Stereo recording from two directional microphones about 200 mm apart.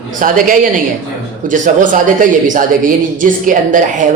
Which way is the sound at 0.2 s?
40° right (ahead or behind).